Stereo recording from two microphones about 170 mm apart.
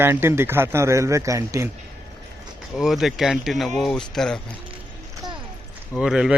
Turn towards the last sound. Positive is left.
turn(degrees=-5)  # may be behind; listen again after turning